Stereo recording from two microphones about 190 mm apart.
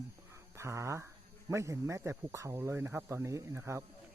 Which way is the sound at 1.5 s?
15° right (ahead or behind).